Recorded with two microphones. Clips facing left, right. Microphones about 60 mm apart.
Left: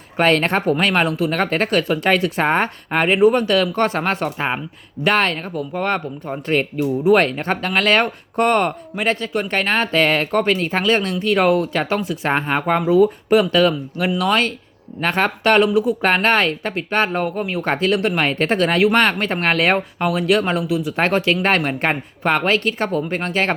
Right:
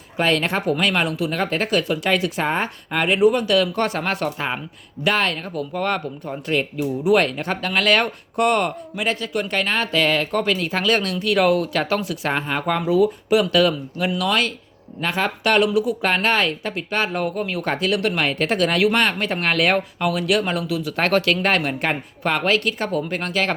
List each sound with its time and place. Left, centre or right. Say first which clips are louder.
0.2 s speech: left 4 dB; left
3.0 s speech: left 2 dB; left
5.0 s speech: left 3 dB; left